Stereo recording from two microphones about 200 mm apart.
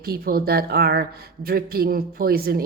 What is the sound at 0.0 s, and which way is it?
A woman's voice, 50° right (ahead or behind).